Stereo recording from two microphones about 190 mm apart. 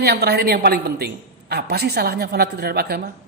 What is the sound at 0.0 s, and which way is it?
A woman's voice, 60° right (ahead or behind).